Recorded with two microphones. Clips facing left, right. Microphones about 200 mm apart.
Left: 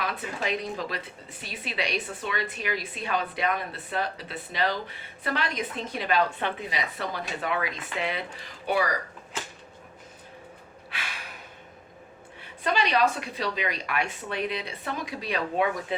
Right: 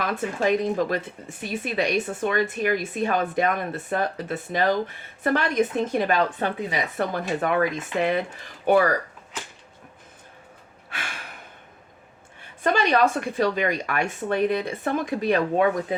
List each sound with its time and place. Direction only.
0.0 s a woman's voice: 45° right (ahead or behind)
12.6 s a woman's voice: 50° right (ahead or behind)